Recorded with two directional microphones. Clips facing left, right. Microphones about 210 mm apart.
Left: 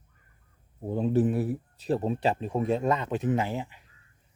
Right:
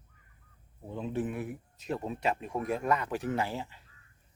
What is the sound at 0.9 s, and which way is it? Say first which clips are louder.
Speech: left 9 dB; 40° left (ahead or behind).